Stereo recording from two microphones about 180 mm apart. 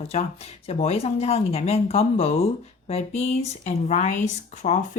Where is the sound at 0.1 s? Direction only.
35° left (ahead or behind).